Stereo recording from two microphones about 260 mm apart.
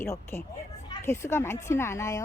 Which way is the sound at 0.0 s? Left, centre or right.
Centre.